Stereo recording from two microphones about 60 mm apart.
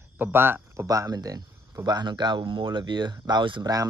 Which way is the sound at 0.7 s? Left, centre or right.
Right.